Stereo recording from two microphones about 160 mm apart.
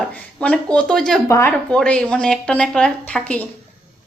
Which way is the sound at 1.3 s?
15° left (ahead or behind).